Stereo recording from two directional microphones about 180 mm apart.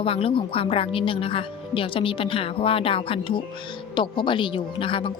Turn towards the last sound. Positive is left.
turn(degrees=30)  # may be behind; listen again after turning